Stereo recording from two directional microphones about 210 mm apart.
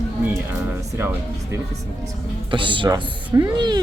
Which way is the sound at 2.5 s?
25° right (ahead or behind).